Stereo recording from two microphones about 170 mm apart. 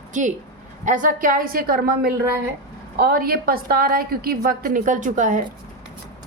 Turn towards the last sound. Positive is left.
turn(degrees=-50)  # may be behind; listen again after turning